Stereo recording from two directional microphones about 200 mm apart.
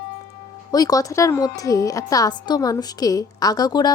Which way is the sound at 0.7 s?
20° left (ahead or behind).